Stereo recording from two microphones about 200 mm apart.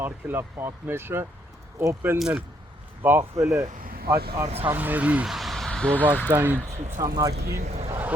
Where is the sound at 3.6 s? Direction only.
45° right (ahead or behind).